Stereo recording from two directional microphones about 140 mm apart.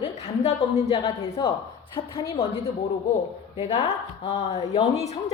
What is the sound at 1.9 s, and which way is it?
Speech, 25° left (ahead or behind).